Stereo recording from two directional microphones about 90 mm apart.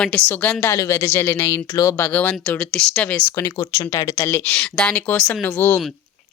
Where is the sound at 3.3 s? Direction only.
35° left (ahead or behind).